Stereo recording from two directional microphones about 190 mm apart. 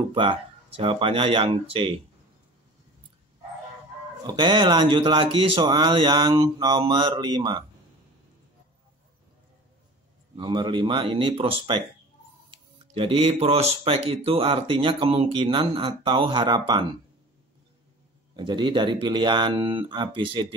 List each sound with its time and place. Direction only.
0.1 s speech: 25° right (ahead or behind)
4.3 s speech: 25° right (ahead or behind)
10.3 s speech: 25° right (ahead or behind)
12.9 s speech: 30° right (ahead or behind)
18.3 s speech: 25° right (ahead or behind)